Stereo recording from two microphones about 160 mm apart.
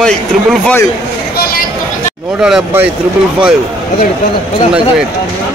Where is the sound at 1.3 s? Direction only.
75° left (ahead or behind).